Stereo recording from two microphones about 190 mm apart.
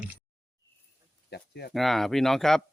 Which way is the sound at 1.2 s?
60° left (ahead or behind).